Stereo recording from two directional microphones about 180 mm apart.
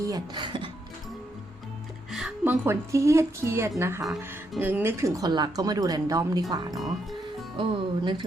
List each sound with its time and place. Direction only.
0.0 s speech: 20° right (ahead or behind)
2.0 s speech: centre (ahead or behind); by 6.4 s 20° right (ahead or behind)
6.7 s speech: centre (ahead or behind)
7.6 s speech: 30° right (ahead or behind)